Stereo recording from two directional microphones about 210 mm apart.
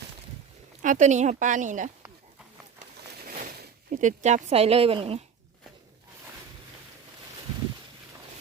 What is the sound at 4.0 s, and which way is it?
Speech, 35° right (ahead or behind).